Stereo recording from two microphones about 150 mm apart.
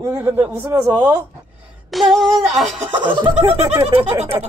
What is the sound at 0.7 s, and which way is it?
Speech, 25° right (ahead or behind).